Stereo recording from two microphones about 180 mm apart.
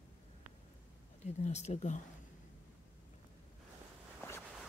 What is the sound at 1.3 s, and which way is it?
Speech, 40° left (ahead or behind).